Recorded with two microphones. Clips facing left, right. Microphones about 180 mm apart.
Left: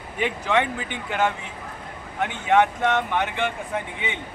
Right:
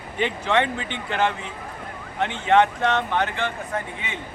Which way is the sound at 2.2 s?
5° left (ahead or behind).